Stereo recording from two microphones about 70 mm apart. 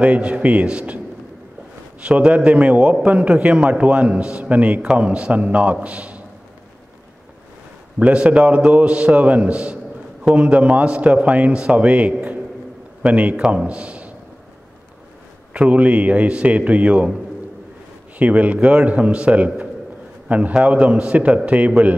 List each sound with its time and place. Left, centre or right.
0.0 s a man's voice: centre
2.0 s a man's voice: centre
8.0 s a man's voice: centre
15.5 s a man's voice: centre
18.2 s a man's voice: right